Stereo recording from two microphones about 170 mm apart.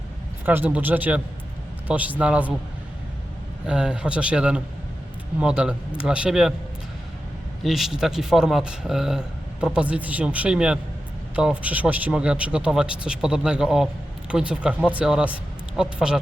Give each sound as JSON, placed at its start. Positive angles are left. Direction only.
{"t": 0.4, "sound": "speech", "side_deg": -10}
{"t": 3.7, "sound": "speech", "side_deg": -5}
{"t": 7.6, "sound": "speech", "side_deg": 0}